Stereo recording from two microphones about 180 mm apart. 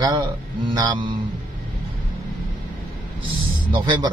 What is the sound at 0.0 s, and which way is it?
Speech, 25° right (ahead or behind).